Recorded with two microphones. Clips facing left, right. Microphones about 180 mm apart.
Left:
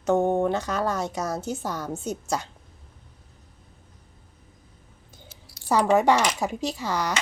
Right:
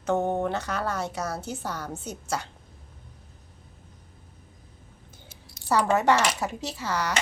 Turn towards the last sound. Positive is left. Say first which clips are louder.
# left 3 dB
turn(degrees=15)  # may be behind; listen again after turning